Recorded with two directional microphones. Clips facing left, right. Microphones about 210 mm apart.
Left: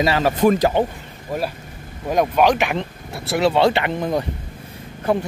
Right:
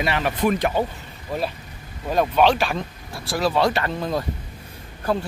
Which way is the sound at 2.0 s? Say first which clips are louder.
Left 2 dB; 10° left (ahead or behind).